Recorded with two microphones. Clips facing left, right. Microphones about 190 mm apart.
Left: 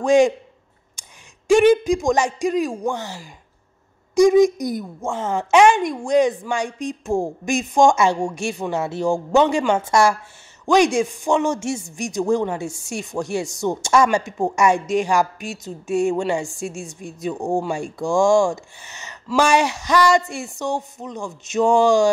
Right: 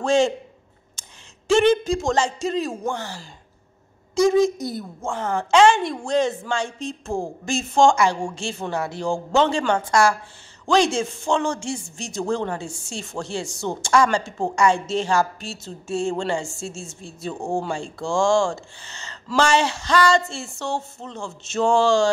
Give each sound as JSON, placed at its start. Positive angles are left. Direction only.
{"t": 0.0, "sound": "a woman's voice", "side_deg": 15}
{"t": 1.5, "sound": "a woman's voice", "side_deg": 15}